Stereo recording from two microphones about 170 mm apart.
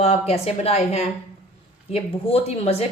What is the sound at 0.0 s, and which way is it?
A woman's voice, 40° left (ahead or behind).